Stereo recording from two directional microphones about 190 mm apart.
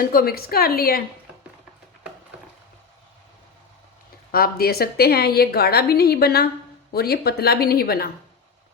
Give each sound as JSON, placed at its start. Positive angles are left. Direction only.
{"t": 0.0, "sound": "a woman's voice", "side_deg": 50}
{"t": 4.3, "sound": "a woman's voice", "side_deg": 50}